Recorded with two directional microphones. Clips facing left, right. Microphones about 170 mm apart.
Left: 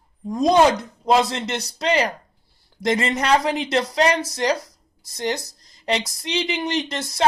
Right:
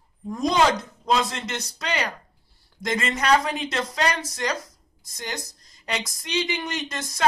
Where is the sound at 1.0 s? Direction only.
30° left (ahead or behind).